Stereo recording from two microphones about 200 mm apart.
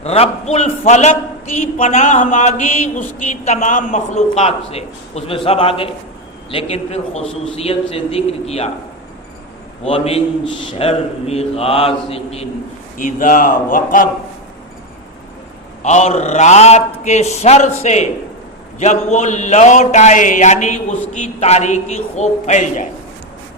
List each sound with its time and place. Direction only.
0.0 s a man's voice: 30° left (ahead or behind)
9.8 s a man's voice: 30° left (ahead or behind)
13.0 s speech: 40° left (ahead or behind)
15.8 s a man's voice: 35° left (ahead or behind)